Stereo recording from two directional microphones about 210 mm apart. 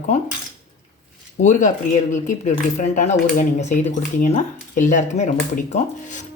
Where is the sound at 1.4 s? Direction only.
35° left (ahead or behind).